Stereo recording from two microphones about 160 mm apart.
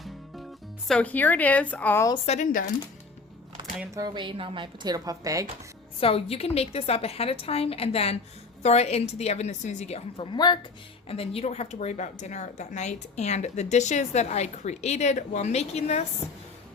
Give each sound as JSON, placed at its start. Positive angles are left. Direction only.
{"t": 0.9, "sound": "speech", "side_deg": 10}
{"t": 2.2, "sound": "speech", "side_deg": 45}
{"t": 3.9, "sound": "speech", "side_deg": -25}
{"t": 6.0, "sound": "a woman's voice", "side_deg": 35}
{"t": 10.3, "sound": "speech", "side_deg": 25}
{"t": 11.1, "sound": "speech", "side_deg": 35}